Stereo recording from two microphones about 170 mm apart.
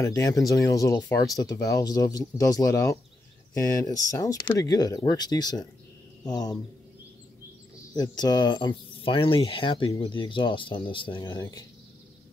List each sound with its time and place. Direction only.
0.0 s speech: 20° left (ahead or behind)
7.9 s speech: 25° left (ahead or behind)